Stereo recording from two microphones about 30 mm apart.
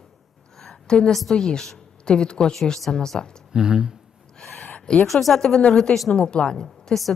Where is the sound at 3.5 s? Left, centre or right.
Right.